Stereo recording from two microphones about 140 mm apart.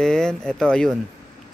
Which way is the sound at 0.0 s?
5° left (ahead or behind).